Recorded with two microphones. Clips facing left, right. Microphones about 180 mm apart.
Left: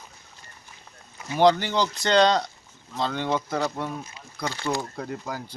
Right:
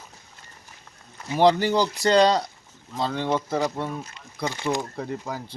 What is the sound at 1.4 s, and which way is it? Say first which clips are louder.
Speech: right 1 dB; centre (ahead or behind).